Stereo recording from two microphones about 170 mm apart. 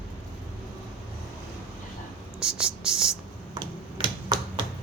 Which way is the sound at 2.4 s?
5° right (ahead or behind).